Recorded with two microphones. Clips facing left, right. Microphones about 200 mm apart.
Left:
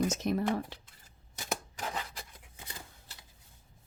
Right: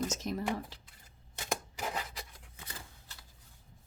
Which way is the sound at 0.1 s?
60° left (ahead or behind).